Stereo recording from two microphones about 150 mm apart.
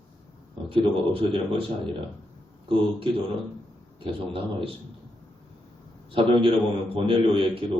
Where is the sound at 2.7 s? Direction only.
40° right (ahead or behind).